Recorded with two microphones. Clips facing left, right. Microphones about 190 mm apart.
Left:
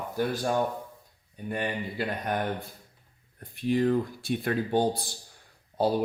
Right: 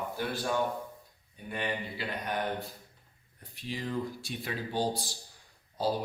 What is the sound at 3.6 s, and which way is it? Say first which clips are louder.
Speech: left 10 dB; 55° left (ahead or behind).